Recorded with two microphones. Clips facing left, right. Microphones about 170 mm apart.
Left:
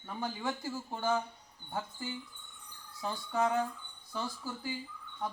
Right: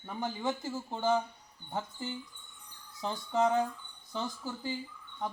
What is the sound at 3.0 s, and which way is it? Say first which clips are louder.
Speech: right 3 dB; 20° right (ahead or behind).